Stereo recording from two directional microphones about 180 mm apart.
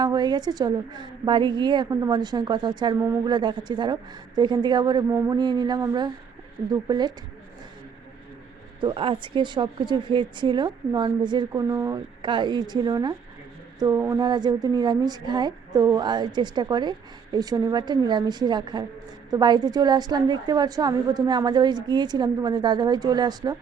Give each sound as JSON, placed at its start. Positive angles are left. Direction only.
{"t": 0.0, "sound": "a woman's voice", "side_deg": -25}
{"t": 8.8, "sound": "a woman's voice", "side_deg": -30}